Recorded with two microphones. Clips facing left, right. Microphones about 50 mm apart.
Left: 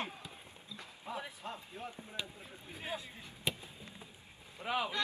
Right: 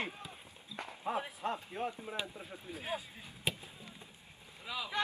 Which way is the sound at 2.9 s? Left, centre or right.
Centre.